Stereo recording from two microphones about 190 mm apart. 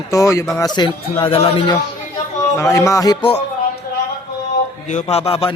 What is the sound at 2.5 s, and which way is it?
Music, 15° left (ahead or behind).